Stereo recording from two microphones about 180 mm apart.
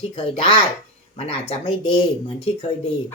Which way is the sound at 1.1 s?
35° left (ahead or behind).